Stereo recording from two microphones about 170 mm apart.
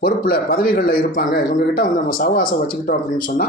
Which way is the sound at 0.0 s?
60° left (ahead or behind).